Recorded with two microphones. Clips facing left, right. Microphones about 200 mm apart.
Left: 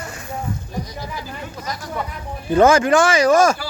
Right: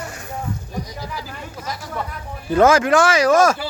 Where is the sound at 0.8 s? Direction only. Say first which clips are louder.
Even; 10° right (ahead or behind).